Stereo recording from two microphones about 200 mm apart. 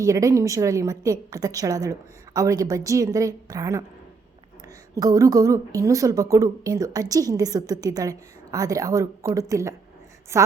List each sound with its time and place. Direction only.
0.0 s a woman's voice: 15° right (ahead or behind)
4.9 s a woman's voice: 15° right (ahead or behind)